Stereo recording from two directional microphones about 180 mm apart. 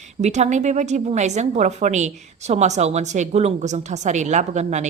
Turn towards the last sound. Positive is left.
turn(degrees=-40)  # may be behind; listen again after turning